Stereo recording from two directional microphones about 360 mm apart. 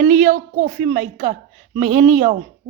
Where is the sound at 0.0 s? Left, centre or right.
Right.